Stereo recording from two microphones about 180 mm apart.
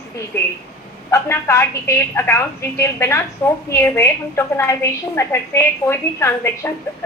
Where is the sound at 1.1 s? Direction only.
15° left (ahead or behind).